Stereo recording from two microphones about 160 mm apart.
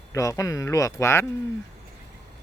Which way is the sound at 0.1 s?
20° left (ahead or behind).